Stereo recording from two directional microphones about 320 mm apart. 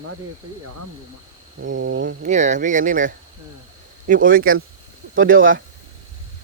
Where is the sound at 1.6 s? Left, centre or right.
Right.